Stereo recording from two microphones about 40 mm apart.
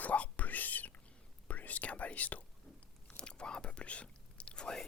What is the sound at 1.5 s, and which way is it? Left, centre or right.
Speech, left.